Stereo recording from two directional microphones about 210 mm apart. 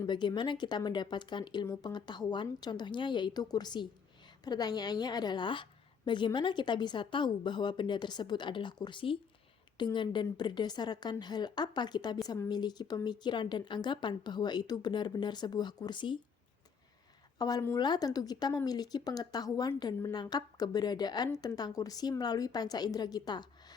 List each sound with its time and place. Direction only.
0.0 s a woman's voice: 20° left (ahead or behind)
17.3 s a woman's voice: 20° left (ahead or behind)